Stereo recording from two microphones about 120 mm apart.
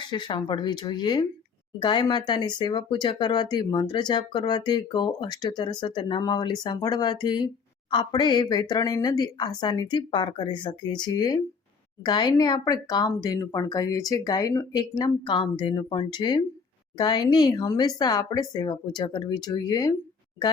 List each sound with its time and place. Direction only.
0.1 s speech: 40° left (ahead or behind)